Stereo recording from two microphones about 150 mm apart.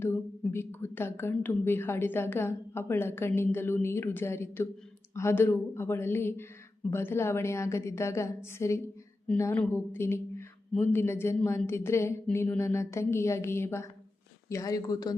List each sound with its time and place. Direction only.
0.0 s a woman's voice: 15° left (ahead or behind)